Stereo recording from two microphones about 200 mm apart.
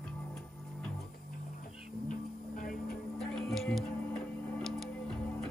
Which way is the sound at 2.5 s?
45° left (ahead or behind).